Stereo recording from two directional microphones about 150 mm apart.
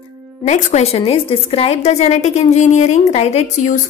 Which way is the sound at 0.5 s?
50° left (ahead or behind).